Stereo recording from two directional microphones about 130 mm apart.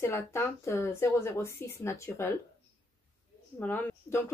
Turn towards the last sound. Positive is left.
turn(degrees=15)  # may be behind; listen again after turning